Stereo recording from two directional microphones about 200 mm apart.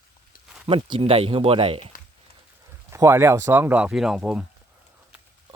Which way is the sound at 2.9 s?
15° right (ahead or behind).